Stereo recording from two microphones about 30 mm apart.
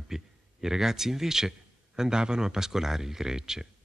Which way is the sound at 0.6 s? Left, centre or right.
Centre.